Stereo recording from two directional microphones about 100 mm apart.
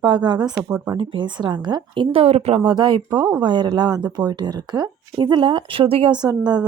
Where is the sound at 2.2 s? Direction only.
90° right.